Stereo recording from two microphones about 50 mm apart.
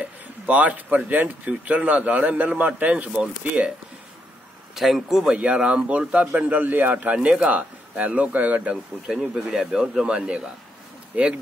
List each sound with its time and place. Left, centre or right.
0.0 s a man's voice: right
4.7 s speech: centre
5.3 s a man's voice: centre
9.1 s a man's voice: centre